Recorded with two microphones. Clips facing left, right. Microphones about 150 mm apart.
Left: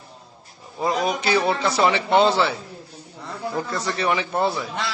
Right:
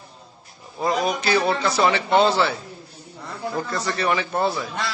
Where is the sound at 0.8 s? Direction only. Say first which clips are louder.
Even; 5° left (ahead or behind).